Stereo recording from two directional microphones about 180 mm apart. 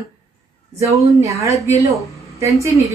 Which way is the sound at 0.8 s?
15° right (ahead or behind).